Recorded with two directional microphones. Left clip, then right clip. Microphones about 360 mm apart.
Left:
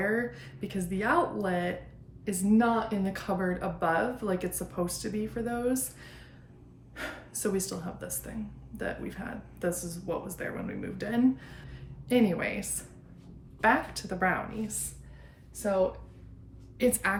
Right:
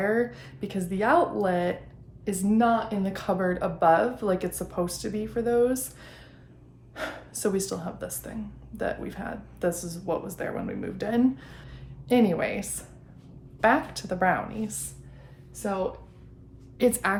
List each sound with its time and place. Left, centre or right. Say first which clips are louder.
0.0 s a woman's voice: right 4 dB; centre
16.7 s a woman's voice: right 3 dB; centre